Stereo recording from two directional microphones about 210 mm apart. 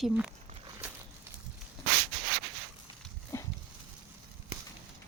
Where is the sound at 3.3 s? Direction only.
10° left (ahead or behind).